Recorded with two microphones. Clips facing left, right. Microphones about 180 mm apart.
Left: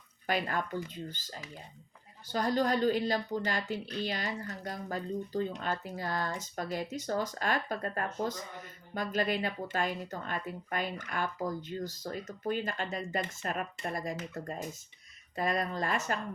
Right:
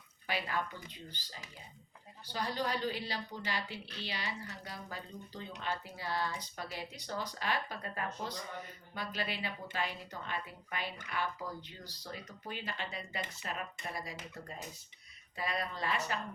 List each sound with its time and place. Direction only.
0.3 s speech: 45° left (ahead or behind)